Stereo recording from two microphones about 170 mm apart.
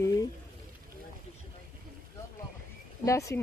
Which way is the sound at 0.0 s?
20° left (ahead or behind).